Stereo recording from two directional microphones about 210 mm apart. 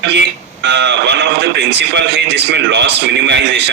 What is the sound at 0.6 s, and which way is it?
Speech, 55° right (ahead or behind).